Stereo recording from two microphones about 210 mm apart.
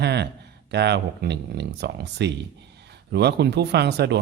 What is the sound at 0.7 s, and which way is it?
Speech, 55° right (ahead or behind).